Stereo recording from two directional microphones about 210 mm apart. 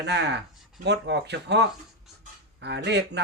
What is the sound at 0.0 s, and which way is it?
Speech, 55° right (ahead or behind).